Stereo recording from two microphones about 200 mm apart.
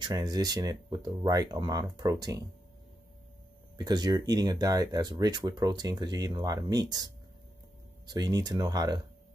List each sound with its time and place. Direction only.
0.0 s speech: 20° right (ahead or behind)
3.7 s speech: 20° right (ahead or behind)
8.1 s speech: 20° right (ahead or behind)